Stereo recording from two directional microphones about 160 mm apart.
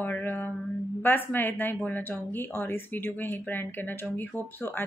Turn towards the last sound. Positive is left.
turn(degrees=15)  # may be behind; listen again after turning